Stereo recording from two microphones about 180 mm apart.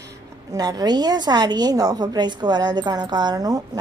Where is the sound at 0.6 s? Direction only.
20° right (ahead or behind).